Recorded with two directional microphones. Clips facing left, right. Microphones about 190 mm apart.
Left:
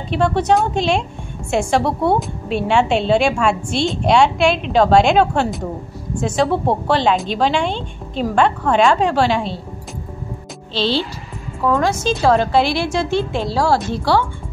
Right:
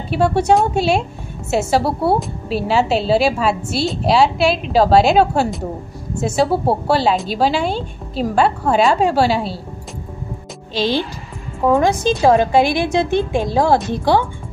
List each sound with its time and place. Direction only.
0.1 s a woman's voice: 10° right (ahead or behind)
10.7 s a woman's voice: 15° right (ahead or behind)